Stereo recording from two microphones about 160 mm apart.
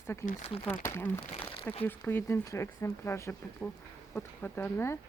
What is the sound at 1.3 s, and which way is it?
Crumpling, 35° left (ahead or behind).